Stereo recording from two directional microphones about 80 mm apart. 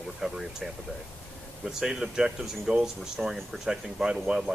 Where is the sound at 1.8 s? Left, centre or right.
Centre.